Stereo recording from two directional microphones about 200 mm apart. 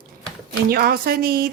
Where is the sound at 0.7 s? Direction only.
50° right (ahead or behind).